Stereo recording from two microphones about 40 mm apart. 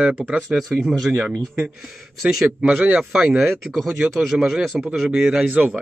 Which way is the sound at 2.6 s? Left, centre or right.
Right.